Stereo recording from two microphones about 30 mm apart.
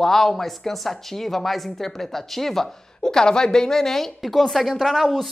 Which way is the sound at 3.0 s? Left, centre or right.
Left.